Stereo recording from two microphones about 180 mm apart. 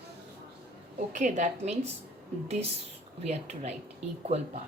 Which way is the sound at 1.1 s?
45° right (ahead or behind).